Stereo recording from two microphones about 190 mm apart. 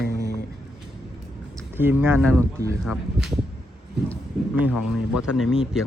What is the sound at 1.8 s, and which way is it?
Speech, 10° right (ahead or behind).